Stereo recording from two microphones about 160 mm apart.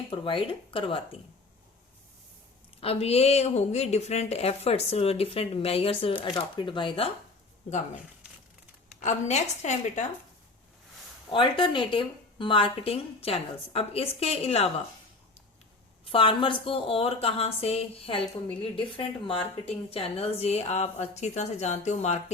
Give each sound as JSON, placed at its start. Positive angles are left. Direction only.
{"t": 0.1, "sound": "a woman's voice", "side_deg": 30}
{"t": 2.8, "sound": "a woman's voice", "side_deg": 40}
{"t": 7.7, "sound": "a woman's voice", "side_deg": 50}
{"t": 11.3, "sound": "a woman's voice", "side_deg": 30}
{"t": 16.0, "sound": "a woman's voice", "side_deg": 35}